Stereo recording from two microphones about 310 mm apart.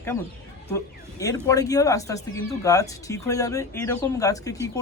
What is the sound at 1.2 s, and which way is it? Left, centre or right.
Speech, centre.